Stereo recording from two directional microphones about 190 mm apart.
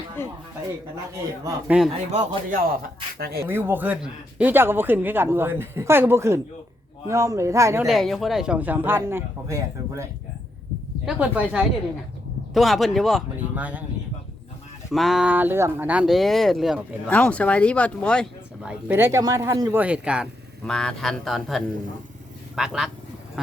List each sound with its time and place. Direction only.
1.5 s speech: 5° right (ahead or behind)
2.1 s a man's voice: 45° right (ahead or behind)
3.4 s speech: 10° right (ahead or behind)
7.9 s speech: centre (ahead or behind)
14.9 s speech: centre (ahead or behind)